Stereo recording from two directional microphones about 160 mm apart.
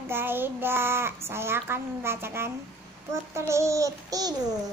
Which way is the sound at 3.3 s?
15° right (ahead or behind).